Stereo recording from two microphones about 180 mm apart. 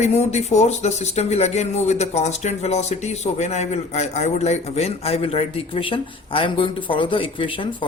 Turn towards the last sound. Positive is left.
turn(degrees=30)  # may be behind; listen again after turning